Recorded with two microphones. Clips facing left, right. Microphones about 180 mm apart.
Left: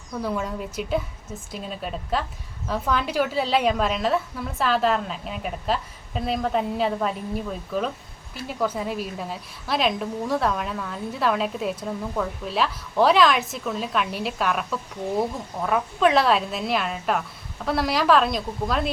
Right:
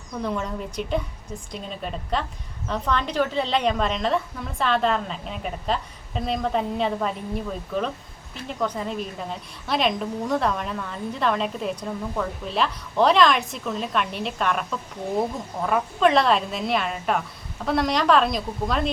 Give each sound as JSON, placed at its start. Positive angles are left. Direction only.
{"t": 0.2, "sound": "a woman's voice", "side_deg": 5}